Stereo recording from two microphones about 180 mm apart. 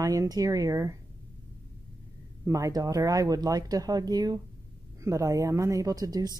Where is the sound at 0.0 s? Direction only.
20° right (ahead or behind).